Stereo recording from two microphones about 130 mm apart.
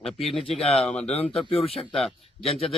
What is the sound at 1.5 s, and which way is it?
Speech, 50° left (ahead or behind).